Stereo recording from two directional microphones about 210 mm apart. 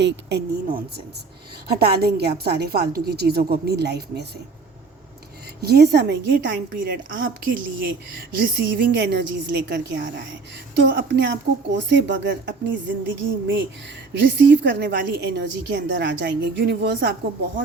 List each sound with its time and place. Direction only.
0.0 s a woman's voice: 50° right (ahead or behind)
5.6 s a woman's voice: 50° right (ahead or behind)
8.4 s a woman's voice: 55° right (ahead or behind)
14.1 s a woman's voice: 55° right (ahead or behind)